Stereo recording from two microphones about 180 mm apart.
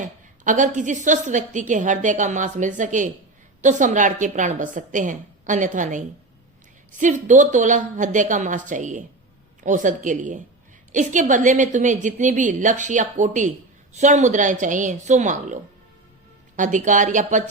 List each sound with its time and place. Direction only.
0.4 s a woman's voice: 45° right (ahead or behind)
16.6 s a woman's voice: 45° right (ahead or behind)